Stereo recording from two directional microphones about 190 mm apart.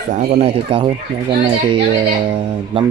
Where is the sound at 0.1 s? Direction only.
35° right (ahead or behind).